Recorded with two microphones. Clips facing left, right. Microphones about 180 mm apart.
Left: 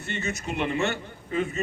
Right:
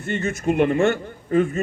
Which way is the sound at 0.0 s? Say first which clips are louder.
Right 8 dB; 50° right (ahead or behind).